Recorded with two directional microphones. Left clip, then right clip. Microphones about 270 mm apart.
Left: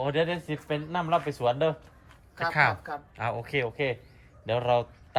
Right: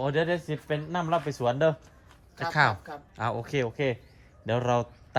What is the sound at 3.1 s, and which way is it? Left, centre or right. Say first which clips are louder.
Speech: right 2 dB; centre.